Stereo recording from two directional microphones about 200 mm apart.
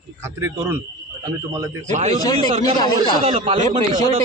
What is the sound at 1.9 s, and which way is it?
Speech, 35° right (ahead or behind).